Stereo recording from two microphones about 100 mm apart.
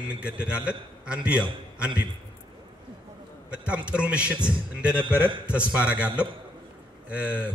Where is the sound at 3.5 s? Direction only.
10° right (ahead or behind).